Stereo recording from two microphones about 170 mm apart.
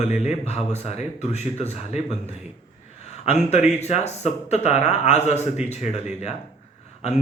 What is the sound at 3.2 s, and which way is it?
A man's voice, 40° left (ahead or behind).